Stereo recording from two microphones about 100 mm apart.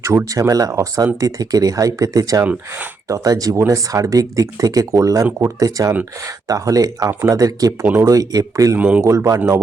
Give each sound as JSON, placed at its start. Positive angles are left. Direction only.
{"t": 0.0, "sound": "speech", "side_deg": -30}
{"t": 2.4, "sound": "speech", "side_deg": -15}
{"t": 3.1, "sound": "speech", "side_deg": -35}